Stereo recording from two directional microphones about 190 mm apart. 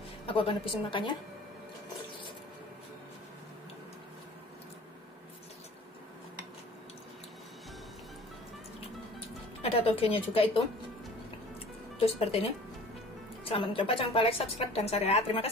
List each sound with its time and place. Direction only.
0.3 s a woman's voice: 30° left (ahead or behind)
9.6 s a woman's voice: 30° left (ahead or behind)
12.0 s speech: 30° left (ahead or behind)